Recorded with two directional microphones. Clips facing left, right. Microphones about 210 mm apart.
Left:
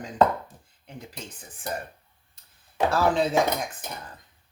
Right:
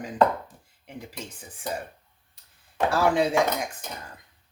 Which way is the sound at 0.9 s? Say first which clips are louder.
Right 2 dB; 10° right (ahead or behind).